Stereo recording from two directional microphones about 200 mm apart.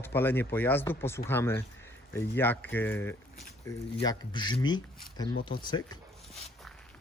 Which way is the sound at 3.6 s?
20° left (ahead or behind).